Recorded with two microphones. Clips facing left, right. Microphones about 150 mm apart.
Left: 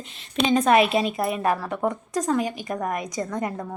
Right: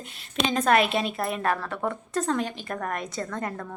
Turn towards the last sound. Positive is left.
turn(degrees=15)  # may be behind; listen again after turning